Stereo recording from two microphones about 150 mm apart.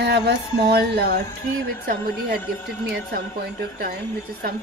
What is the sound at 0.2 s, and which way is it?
A woman's voice, 90° right.